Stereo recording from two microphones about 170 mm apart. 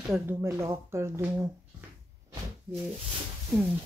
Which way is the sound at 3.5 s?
15° right (ahead or behind).